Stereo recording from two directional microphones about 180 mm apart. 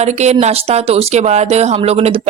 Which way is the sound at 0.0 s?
40° right (ahead or behind).